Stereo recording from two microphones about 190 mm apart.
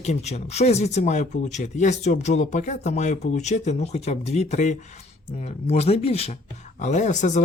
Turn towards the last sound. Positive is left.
turn(degrees=40)  # may be behind; listen again after turning